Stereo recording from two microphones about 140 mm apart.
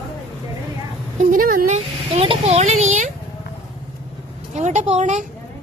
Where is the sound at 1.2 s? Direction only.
75° right (ahead or behind).